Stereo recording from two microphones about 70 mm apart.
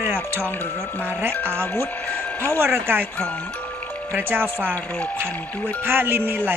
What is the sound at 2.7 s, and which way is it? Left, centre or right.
Speech, right.